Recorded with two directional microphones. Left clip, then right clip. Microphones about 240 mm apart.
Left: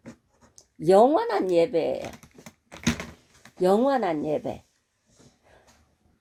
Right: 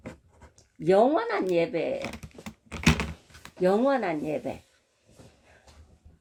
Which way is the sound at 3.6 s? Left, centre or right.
Left.